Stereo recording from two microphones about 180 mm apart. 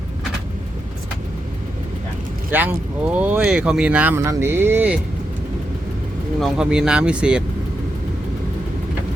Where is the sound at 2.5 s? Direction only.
10° right (ahead or behind).